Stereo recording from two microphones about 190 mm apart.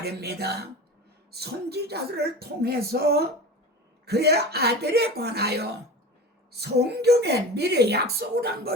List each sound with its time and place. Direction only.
0.0 s speech: 55° right (ahead or behind)